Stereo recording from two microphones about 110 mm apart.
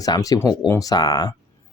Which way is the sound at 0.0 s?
35° left (ahead or behind).